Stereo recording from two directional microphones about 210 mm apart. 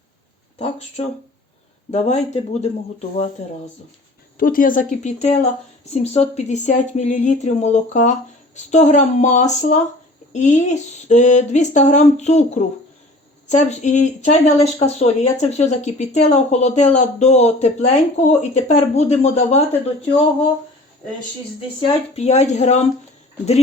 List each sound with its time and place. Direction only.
1.0 s speech: 30° left (ahead or behind)
4.4 s speech: 40° left (ahead or behind)
21.8 s speech: 30° left (ahead or behind)